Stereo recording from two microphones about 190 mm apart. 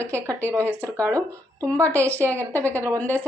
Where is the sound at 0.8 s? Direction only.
15° right (ahead or behind).